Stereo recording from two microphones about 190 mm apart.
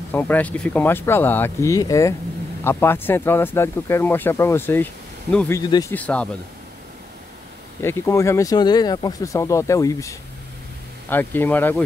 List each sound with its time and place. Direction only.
0.1 s speech: 10° left (ahead or behind)
5.6 s speech: 20° left (ahead or behind)
5.9 s speech: 5° left (ahead or behind)
7.8 s speech: 15° left (ahead or behind)